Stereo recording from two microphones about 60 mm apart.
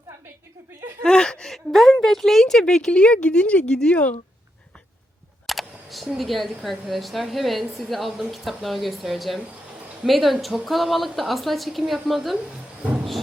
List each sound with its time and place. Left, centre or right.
1.0 s speech: centre
5.5 s speech: centre